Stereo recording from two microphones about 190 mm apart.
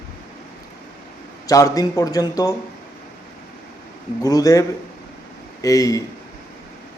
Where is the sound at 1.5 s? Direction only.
15° left (ahead or behind).